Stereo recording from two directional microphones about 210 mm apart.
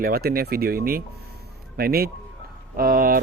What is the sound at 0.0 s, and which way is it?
Speech, 45° right (ahead or behind).